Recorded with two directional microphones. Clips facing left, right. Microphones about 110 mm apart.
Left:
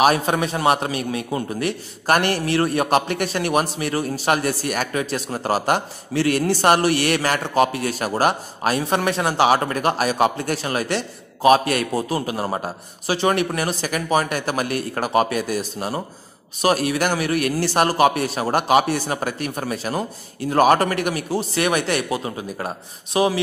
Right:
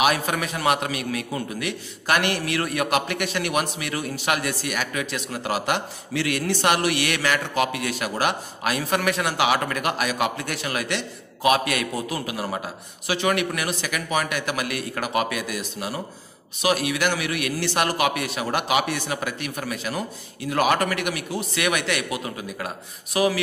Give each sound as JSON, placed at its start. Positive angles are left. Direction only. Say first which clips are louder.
{"t": 0.0, "sound": "a man's voice", "louder": "left 5 dB", "side_deg": 35}